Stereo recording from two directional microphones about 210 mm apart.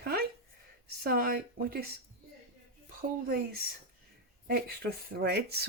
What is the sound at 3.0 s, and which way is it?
Speech, 45° right (ahead or behind).